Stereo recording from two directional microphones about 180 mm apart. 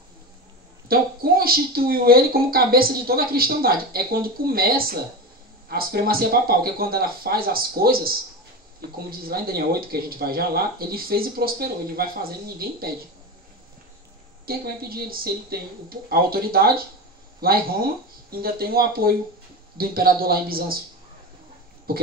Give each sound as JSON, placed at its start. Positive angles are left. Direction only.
{"t": 0.8, "sound": "speech", "side_deg": -55}
{"t": 9.2, "sound": "speech", "side_deg": -60}
{"t": 14.4, "sound": "speech", "side_deg": -55}